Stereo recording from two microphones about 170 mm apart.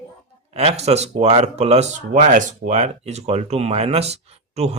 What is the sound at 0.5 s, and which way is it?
Speech, 35° right (ahead or behind).